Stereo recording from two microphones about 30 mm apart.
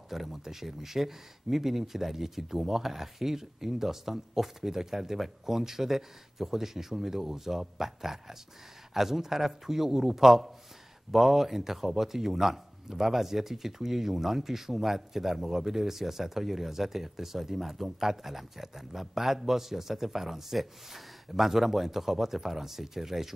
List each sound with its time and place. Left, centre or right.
0.1 s speech: centre